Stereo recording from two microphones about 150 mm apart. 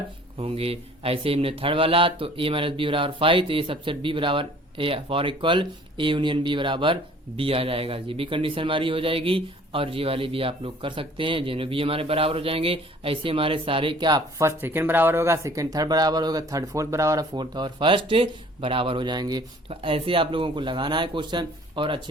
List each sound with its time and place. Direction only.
0.3 s speech: 40° right (ahead or behind)
19.6 s speech: 40° right (ahead or behind)